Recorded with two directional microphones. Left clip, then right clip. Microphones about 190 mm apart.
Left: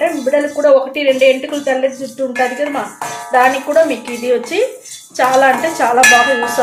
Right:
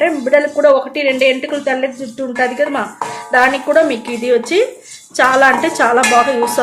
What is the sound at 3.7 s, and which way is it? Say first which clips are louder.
Speech: even; 40° right (ahead or behind).